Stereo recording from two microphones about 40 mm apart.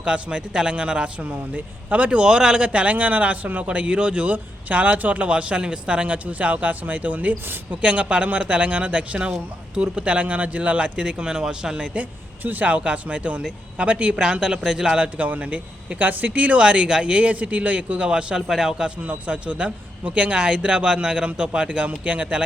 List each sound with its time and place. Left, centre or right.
0.0 s a man's voice: right
1.2 s a man's voice: right
2.6 s speech: right
5.3 s a man's voice: right
6.4 s a man's voice: right; by 11.9 s centre
12.4 s speech: right
12.6 s speech: right
14.2 s a man's voice: right
15.2 s speech: right
18.3 s a man's voice: centre
19.0 s a man's voice: right